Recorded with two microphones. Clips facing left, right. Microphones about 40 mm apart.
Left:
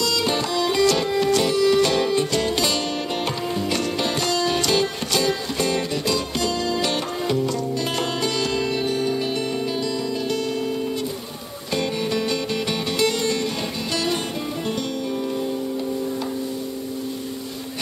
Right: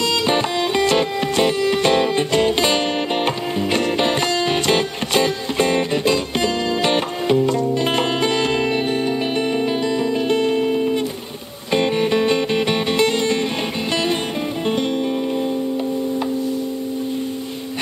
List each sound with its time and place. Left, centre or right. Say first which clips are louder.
0.0 s music: right 4 dB; right